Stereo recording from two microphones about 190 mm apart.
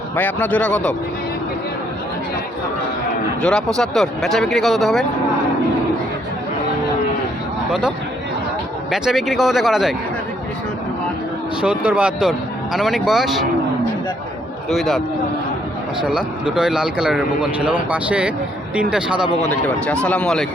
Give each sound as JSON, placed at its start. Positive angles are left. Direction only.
{"t": 0.2, "sound": "speech", "side_deg": 10}
{"t": 3.8, "sound": "speech", "side_deg": 0}
{"t": 7.7, "sound": "speech", "side_deg": -5}
{"t": 11.6, "sound": "speech", "side_deg": -5}
{"t": 14.7, "sound": "speech", "side_deg": 0}
{"t": 16.0, "sound": "speech", "side_deg": -5}
{"t": 19.4, "sound": "speech", "side_deg": 5}